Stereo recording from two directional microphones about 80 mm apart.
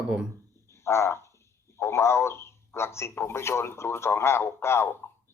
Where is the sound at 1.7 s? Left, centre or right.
Left.